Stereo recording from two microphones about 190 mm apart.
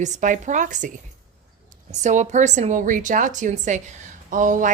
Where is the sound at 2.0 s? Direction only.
40° right (ahead or behind).